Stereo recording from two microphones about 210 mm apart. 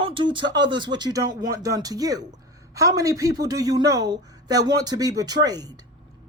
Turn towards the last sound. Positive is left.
turn(degrees=-20)  # may be behind; listen again after turning